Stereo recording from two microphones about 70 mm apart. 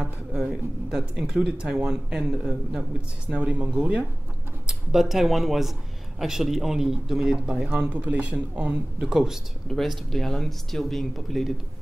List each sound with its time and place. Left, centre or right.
0.0 s speech: centre
4.6 s speech: centre
9.7 s speech: centre